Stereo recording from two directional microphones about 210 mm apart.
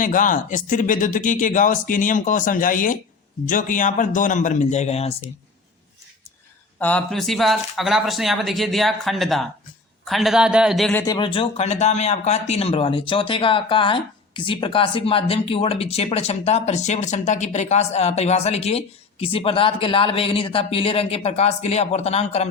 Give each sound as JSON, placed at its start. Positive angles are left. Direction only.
{"t": 0.0, "sound": "speech", "side_deg": 40}
{"t": 6.7, "sound": "speech", "side_deg": 5}
{"t": 11.0, "sound": "speech", "side_deg": 20}